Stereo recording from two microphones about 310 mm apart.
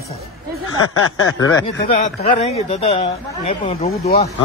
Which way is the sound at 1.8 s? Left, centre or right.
Left.